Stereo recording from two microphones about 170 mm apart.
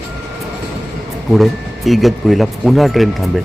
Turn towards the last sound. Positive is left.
turn(degrees=0)  # may be behind; listen again after turning